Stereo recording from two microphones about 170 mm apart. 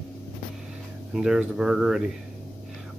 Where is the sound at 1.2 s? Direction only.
5° right (ahead or behind).